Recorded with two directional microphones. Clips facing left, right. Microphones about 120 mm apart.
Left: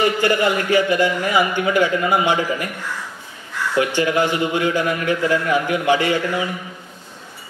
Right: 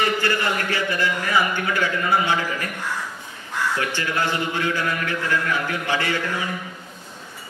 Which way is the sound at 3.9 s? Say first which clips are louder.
Left 6 dB; 15° left (ahead or behind).